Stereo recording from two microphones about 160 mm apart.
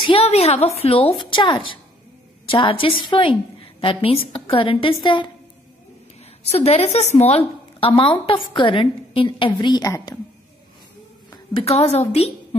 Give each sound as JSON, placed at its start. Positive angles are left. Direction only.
{"t": 0.0, "sound": "a woman's voice", "side_deg": 35}
{"t": 6.4, "sound": "a woman's voice", "side_deg": 40}
{"t": 11.6, "sound": "a woman's voice", "side_deg": 40}